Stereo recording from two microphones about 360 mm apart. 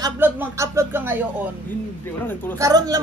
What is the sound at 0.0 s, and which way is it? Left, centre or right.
Speech, centre.